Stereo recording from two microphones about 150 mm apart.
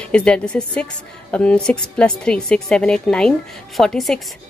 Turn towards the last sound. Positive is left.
turn(degrees=0)  # may be behind; listen again after turning